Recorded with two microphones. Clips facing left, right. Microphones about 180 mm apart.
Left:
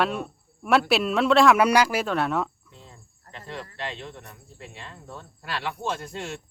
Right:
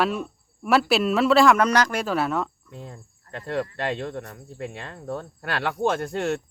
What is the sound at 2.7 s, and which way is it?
Speech, 55° right (ahead or behind).